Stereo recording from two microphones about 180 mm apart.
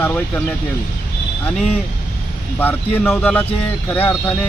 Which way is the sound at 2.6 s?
10° left (ahead or behind).